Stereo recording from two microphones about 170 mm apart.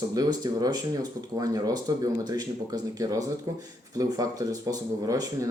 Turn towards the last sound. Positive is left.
turn(degrees=-20)  # may be behind; listen again after turning